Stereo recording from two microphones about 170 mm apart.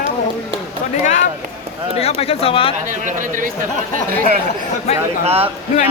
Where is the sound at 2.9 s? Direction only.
50° right (ahead or behind).